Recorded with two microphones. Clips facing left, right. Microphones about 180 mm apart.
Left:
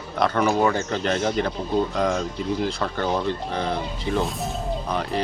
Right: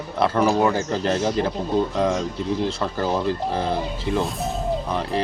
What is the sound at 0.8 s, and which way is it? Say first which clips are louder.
Speech: right 2 dB; 30° right (ahead or behind).